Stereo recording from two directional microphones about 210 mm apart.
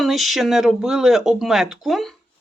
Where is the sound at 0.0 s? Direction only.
Centre (ahead or behind).